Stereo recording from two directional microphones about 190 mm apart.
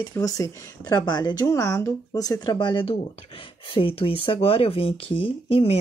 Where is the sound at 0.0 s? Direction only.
15° left (ahead or behind).